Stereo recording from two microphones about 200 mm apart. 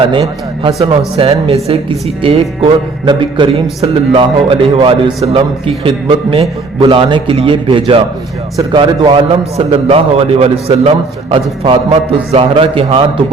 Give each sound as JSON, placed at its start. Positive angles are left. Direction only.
{"t": 0.1, "sound": "a man's voice", "side_deg": -25}